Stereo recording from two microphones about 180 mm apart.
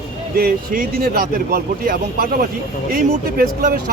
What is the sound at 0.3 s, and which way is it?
Speech, 55° right (ahead or behind).